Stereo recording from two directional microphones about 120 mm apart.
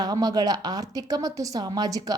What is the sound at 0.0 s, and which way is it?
Speech, 30° right (ahead or behind).